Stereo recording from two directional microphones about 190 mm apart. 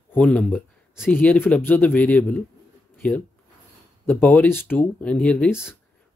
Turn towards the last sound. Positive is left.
turn(degrees=10)  # may be behind; listen again after turning